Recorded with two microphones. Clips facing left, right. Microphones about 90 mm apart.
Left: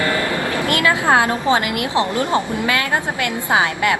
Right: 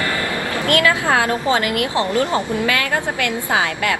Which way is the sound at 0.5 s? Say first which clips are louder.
Right 3 dB; 20° left (ahead or behind).